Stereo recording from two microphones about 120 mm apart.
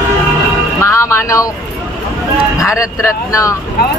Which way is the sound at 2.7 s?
25° left (ahead or behind).